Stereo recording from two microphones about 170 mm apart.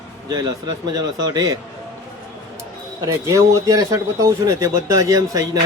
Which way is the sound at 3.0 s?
20° right (ahead or behind).